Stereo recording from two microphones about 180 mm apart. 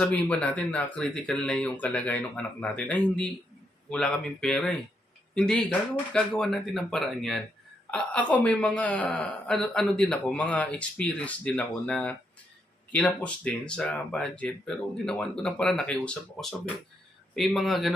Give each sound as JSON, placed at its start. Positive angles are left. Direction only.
{"t": 0.0, "sound": "speech", "side_deg": 5}